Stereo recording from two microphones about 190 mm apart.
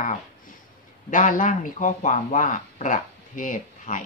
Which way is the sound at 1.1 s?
45° left (ahead or behind).